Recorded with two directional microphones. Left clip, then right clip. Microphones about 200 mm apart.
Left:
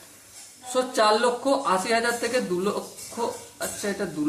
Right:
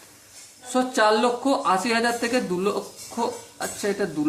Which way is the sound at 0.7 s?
40° right (ahead or behind).